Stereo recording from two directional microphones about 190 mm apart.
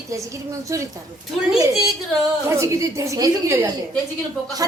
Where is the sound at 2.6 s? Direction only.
15° right (ahead or behind).